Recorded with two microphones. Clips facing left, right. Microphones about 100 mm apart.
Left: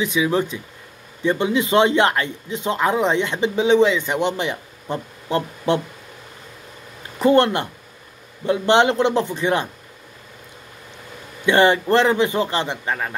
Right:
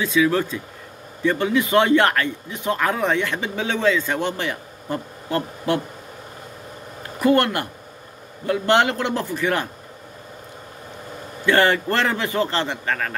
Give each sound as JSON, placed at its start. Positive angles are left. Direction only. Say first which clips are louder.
{"t": 0.0, "sound": "speech", "louder": "right 1 dB", "side_deg": 20}
{"t": 7.2, "sound": "speech", "louder": "left 2 dB", "side_deg": 25}
{"t": 11.4, "sound": "a man's voice", "louder": "left 2 dB", "side_deg": 20}